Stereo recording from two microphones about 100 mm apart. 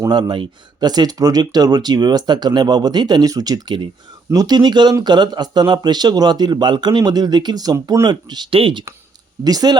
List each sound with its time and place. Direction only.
0.1 s speech: 50° right (ahead or behind)
8.4 s speech: 65° right (ahead or behind)
9.4 s speech: 40° right (ahead or behind)